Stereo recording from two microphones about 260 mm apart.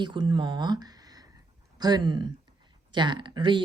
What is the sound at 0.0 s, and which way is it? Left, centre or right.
Speech, centre.